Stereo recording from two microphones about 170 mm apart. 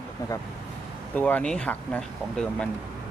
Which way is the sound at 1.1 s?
10° left (ahead or behind).